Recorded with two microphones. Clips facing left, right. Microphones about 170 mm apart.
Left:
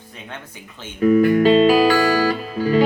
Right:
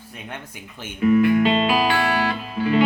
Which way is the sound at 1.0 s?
40° left (ahead or behind).